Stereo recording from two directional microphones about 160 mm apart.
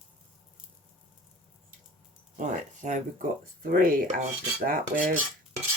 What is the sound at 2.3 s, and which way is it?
Speech, 50° right (ahead or behind).